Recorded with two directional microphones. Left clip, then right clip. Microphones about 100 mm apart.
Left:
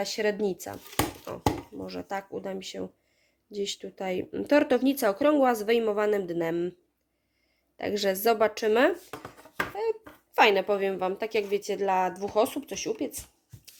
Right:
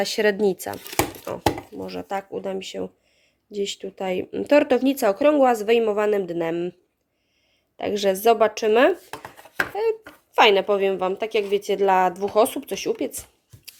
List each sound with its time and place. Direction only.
0.0 s speech: 50° right (ahead or behind)
1.8 s speech: 25° right (ahead or behind)
7.8 s speech: 20° right (ahead or behind)
10.3 s speech: 20° right (ahead or behind)
11.7 s speech: 40° right (ahead or behind)